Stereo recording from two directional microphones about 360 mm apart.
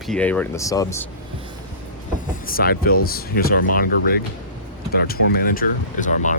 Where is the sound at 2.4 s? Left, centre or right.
Left.